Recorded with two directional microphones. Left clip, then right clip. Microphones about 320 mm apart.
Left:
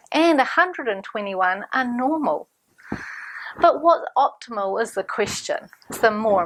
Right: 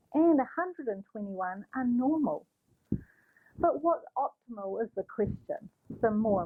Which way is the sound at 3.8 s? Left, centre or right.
Left.